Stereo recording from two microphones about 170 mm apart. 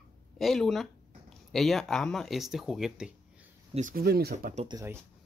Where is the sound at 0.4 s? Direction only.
Centre (ahead or behind).